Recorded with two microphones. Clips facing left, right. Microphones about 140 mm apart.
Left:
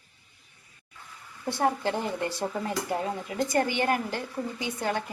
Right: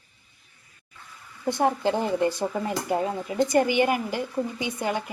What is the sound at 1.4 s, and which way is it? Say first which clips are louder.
A woman's voice: right 3 dB; 15° right (ahead or behind).